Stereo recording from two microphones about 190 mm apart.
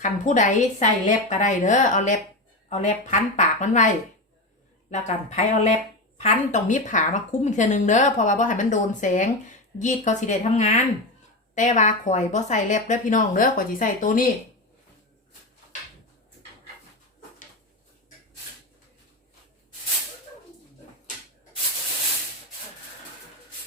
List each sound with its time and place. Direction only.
0.0 s speech: 40° left (ahead or behind)
4.9 s speech: 40° left (ahead or behind)